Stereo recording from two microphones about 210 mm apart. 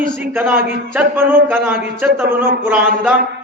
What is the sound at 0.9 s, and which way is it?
A man's voice, 10° right (ahead or behind).